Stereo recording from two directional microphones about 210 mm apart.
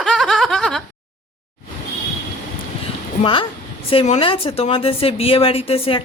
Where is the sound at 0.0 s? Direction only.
Centre (ahead or behind).